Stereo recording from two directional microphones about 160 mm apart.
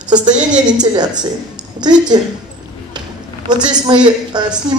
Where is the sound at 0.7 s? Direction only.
25° right (ahead or behind).